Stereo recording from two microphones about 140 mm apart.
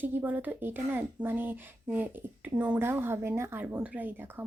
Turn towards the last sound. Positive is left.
turn(degrees=-10)  # may be behind; listen again after turning